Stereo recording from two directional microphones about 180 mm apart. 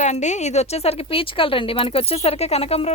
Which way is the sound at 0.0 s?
40° left (ahead or behind).